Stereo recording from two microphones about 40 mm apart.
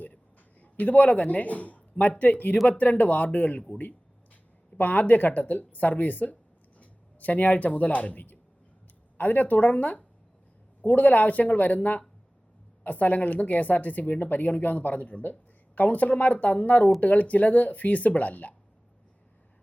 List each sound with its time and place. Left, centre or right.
0.6 s a man's voice: left
4.8 s speech: left